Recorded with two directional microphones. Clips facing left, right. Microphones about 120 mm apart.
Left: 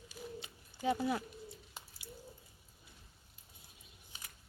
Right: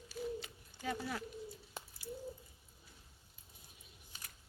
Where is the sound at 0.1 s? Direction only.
20° left (ahead or behind).